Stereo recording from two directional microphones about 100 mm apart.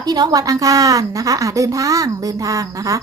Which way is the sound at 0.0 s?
40° right (ahead or behind).